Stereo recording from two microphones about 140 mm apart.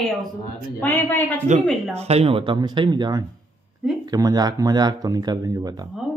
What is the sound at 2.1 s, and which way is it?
Speech, 45° right (ahead or behind).